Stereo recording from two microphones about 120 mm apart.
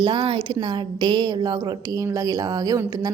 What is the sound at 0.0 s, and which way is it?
A woman's voice, 45° right (ahead or behind).